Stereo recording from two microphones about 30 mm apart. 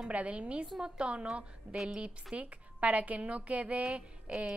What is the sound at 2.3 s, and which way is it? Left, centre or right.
A woman's voice, right.